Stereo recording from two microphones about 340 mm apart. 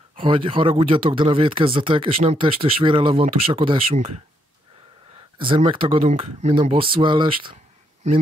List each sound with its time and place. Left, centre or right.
0.1 s speech: centre
5.4 s speech: centre